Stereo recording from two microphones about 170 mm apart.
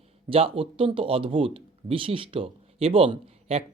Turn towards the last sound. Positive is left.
turn(degrees=-35)  # may be behind; listen again after turning